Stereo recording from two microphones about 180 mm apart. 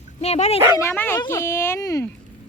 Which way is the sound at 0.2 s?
35° left (ahead or behind).